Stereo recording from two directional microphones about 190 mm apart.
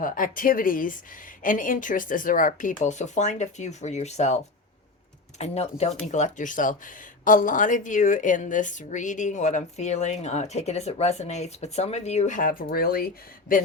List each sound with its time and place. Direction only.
0.0 s speech: 45° left (ahead or behind)
5.4 s speech: 35° left (ahead or behind); by 13.1 s 50° left (ahead or behind)